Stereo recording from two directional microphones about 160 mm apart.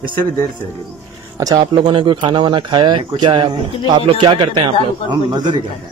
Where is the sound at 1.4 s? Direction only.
25° right (ahead or behind).